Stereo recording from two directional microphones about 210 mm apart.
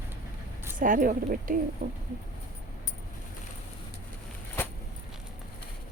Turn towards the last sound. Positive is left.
turn(degrees=10)  # may be behind; listen again after turning